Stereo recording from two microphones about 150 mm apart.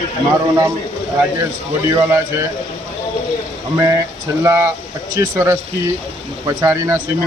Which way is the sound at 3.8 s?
20° right (ahead or behind).